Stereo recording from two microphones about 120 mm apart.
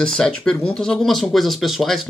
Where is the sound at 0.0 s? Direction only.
5° left (ahead or behind).